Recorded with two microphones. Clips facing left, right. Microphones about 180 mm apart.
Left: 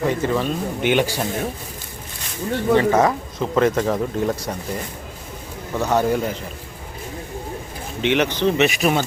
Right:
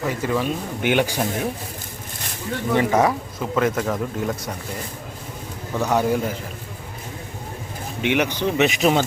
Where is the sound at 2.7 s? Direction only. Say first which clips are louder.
Left 1 dB; 10° right (ahead or behind).